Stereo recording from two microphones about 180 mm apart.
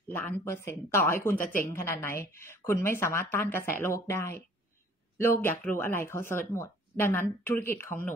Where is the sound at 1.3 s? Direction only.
50° left (ahead or behind).